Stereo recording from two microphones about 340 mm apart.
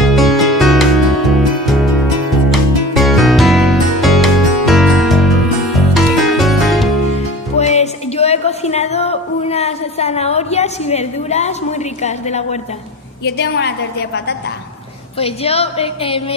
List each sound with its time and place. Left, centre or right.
0.0 s music: centre
7.5 s music: centre
12.0 s a woman's voice: centre
15.1 s a woman's voice: centre